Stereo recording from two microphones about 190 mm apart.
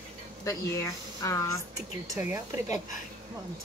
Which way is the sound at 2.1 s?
15° right (ahead or behind).